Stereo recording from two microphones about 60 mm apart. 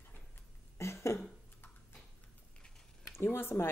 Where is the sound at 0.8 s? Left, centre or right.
Left.